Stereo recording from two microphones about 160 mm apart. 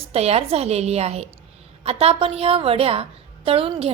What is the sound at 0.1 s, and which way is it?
A woman's voice, 40° right (ahead or behind).